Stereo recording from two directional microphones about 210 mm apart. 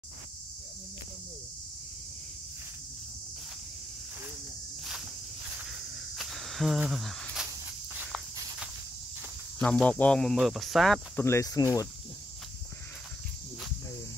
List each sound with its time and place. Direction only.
5.6 s cricket: centre (ahead or behind)
9.6 s speech: 5° left (ahead or behind)
11.2 s speech: 15° left (ahead or behind)